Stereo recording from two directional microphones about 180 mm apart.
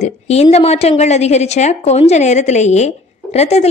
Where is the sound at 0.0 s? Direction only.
35° left (ahead or behind).